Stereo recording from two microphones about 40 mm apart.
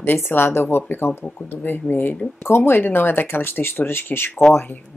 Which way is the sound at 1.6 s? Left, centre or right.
Left.